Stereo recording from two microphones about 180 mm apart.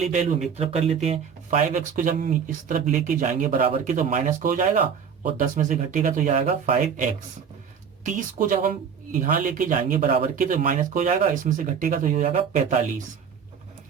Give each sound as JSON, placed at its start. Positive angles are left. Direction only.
{"t": 0.0, "sound": "speech", "side_deg": -40}